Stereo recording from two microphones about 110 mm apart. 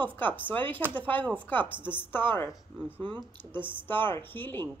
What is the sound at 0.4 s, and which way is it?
Speech, 15° left (ahead or behind).